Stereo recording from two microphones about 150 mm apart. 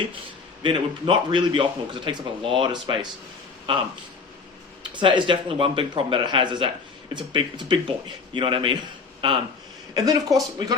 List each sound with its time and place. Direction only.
0.6 s a man's voice: 35° right (ahead or behind)
4.9 s a man's voice: 30° right (ahead or behind)